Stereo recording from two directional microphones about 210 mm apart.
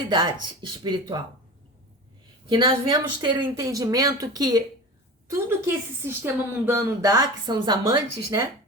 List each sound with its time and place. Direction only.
0.1 s speech: 20° right (ahead or behind)
2.5 s a woman's voice: 20° right (ahead or behind)